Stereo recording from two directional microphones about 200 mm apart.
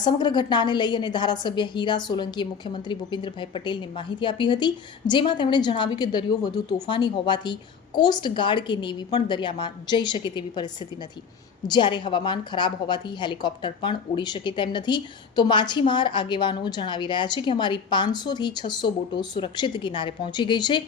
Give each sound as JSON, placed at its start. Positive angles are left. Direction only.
{"t": 0.0, "sound": "a woman's voice", "side_deg": 20}
{"t": 11.7, "sound": "a woman's voice", "side_deg": 25}